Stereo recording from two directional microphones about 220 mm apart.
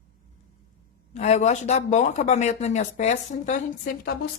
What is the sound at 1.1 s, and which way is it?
Speech, 30° left (ahead or behind).